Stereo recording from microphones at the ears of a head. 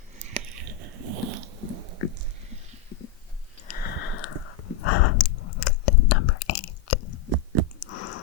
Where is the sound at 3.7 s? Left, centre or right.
Left.